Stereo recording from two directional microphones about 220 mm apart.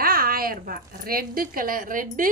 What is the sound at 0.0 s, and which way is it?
A woman's voice, 40° right (ahead or behind).